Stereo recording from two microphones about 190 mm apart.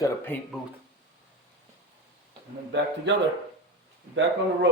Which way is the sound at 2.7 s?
65° right (ahead or behind).